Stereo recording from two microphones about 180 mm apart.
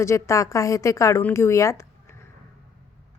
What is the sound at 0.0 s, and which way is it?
A woman's voice, 15° left (ahead or behind).